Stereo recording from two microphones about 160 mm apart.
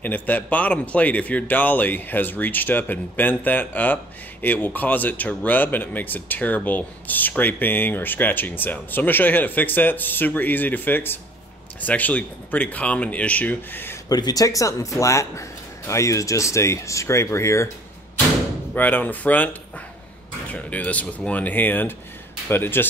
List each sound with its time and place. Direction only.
0.0 s speech: 10° left (ahead or behind)
14.1 s speech: 25° left (ahead or behind)
18.8 s speech: 10° left (ahead or behind)
20.5 s speech: 10° left (ahead or behind)